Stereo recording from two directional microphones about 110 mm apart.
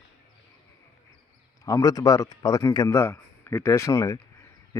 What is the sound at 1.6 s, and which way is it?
A man's voice, 30° left (ahead or behind).